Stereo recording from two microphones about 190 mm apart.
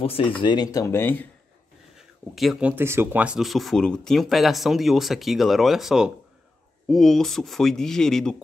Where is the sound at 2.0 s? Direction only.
Centre (ahead or behind).